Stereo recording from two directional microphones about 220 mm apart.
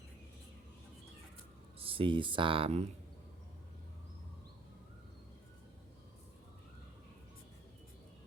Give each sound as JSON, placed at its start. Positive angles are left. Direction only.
{"t": 1.8, "sound": "speech", "side_deg": -25}